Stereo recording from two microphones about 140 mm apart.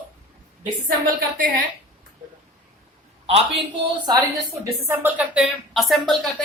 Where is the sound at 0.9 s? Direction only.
75° right (ahead or behind).